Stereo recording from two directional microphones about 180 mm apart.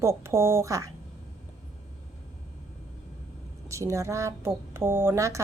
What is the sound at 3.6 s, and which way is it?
Speech, 15° right (ahead or behind).